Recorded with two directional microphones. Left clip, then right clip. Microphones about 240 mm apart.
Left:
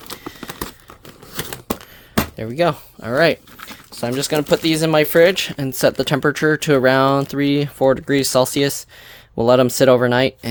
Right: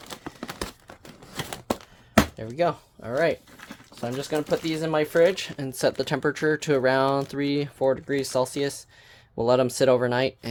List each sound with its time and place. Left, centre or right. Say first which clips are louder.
0.3 s crumpling: left 4 dB; centre
2.3 s speech: left 7 dB; left